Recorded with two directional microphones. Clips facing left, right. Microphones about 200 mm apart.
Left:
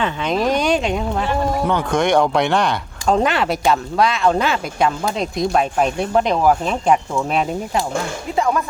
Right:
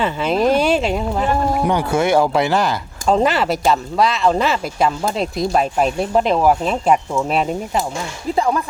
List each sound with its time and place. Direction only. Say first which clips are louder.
0.0 s speech: right 2 dB; 5° right (ahead or behind)